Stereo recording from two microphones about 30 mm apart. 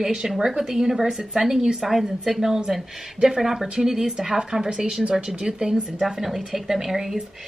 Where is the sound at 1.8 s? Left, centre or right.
Centre.